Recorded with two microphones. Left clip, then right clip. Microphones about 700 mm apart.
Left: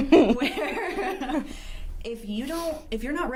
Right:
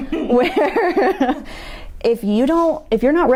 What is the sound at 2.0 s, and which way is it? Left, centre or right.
Speech, right.